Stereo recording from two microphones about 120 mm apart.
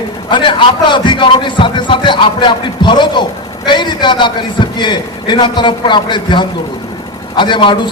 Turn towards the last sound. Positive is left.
turn(degrees=40)  # may be behind; listen again after turning